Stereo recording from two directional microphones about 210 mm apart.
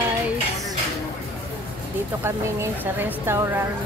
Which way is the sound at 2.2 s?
10° right (ahead or behind).